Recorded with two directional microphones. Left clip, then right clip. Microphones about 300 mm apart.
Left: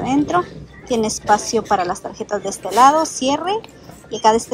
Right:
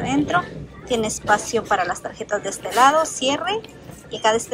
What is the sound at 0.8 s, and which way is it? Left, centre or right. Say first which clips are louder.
A woman's voice: left 3 dB; centre.